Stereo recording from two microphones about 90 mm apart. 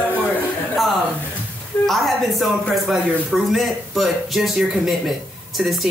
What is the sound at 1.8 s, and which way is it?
Speech, centre (ahead or behind).